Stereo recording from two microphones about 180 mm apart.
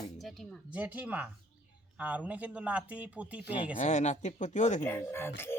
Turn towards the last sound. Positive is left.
turn(degrees=15)  # may be behind; listen again after turning